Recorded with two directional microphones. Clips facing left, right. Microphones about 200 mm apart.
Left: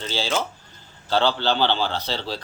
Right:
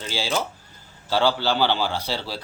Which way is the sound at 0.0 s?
10° right (ahead or behind).